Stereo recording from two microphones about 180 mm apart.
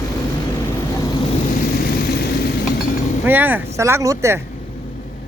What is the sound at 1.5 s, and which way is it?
Vehicle, 55° left (ahead or behind).